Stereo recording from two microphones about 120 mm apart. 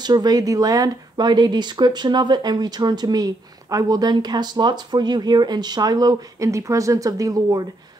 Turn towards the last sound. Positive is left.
turn(degrees=-30)  # may be behind; listen again after turning